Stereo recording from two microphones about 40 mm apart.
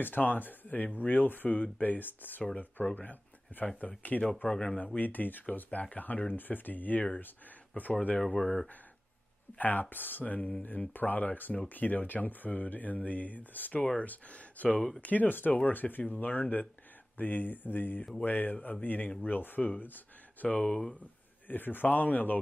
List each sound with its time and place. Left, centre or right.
0.2 s speech: left
2.4 s speech: left
4.1 s speech: left
4.9 s speech: left
8.3 s speech: left
9.6 s speech: left
20.6 s speech: left
21.5 s speech: left